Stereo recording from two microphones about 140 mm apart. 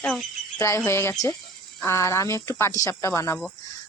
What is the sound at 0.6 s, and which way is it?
Speech, 20° left (ahead or behind).